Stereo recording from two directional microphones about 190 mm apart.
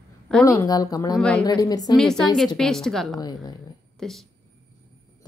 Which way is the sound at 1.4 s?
20° left (ahead or behind).